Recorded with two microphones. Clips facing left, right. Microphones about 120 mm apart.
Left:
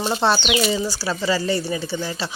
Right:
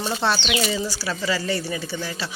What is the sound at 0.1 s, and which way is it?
A woman's voice, 30° left (ahead or behind).